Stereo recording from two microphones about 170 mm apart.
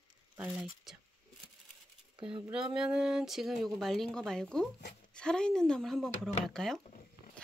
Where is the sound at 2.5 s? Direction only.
5° right (ahead or behind).